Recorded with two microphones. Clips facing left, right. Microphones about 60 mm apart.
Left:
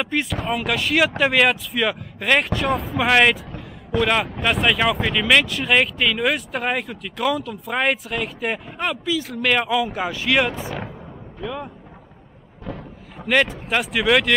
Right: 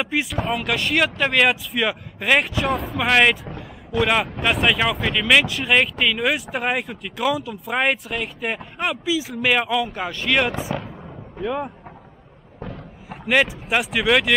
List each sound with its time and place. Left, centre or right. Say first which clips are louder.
0.0 s speech: even; centre
11.4 s speech: right 4 dB; centre
13.3 s speech: even; centre